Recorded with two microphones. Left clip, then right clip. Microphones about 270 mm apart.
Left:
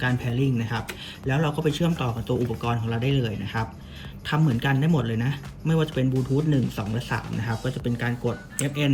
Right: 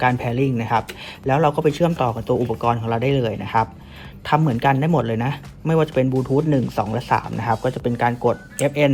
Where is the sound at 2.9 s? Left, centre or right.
Right.